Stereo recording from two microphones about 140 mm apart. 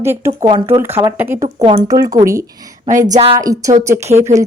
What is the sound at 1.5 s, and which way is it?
Speech, 40° right (ahead or behind).